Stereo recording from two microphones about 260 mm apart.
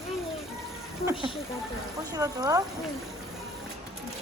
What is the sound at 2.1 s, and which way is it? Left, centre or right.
Speech, centre.